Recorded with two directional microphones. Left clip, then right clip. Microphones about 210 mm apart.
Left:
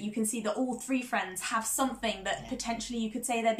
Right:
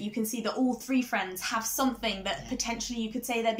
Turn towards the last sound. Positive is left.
turn(degrees=0)  # may be behind; listen again after turning